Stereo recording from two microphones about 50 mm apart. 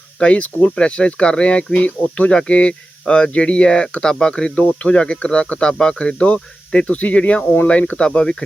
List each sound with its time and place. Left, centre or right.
0.2 s speech: left